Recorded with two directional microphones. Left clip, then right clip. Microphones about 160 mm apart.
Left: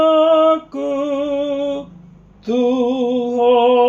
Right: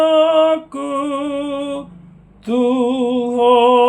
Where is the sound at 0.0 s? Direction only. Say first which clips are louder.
Even; 25° right (ahead or behind).